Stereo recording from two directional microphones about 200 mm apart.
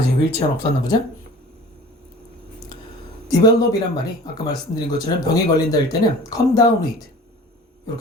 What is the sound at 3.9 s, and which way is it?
Speech, 20° left (ahead or behind).